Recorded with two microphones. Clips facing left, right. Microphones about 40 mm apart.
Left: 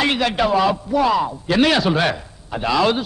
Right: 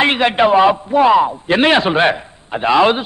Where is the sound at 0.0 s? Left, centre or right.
Right.